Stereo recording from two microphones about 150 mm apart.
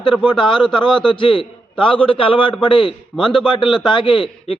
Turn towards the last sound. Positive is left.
turn(degrees=35)  # may be behind; listen again after turning